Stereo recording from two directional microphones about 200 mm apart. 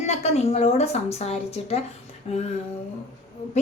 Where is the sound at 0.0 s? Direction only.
35° left (ahead or behind).